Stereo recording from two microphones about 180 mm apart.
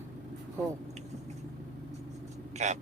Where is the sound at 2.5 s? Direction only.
40° right (ahead or behind).